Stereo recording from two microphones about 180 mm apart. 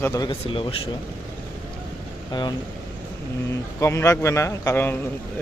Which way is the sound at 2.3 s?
25° left (ahead or behind).